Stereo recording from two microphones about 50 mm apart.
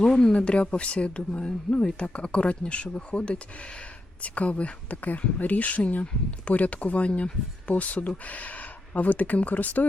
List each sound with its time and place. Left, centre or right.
0.0 s speech: centre; by 9.8 s left